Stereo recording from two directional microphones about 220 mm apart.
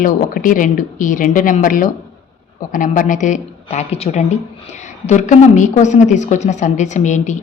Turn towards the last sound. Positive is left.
turn(degrees=35)  # may be behind; listen again after turning